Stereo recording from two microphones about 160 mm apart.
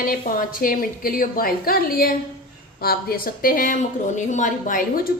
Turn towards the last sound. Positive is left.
turn(degrees=65)  # may be behind; listen again after turning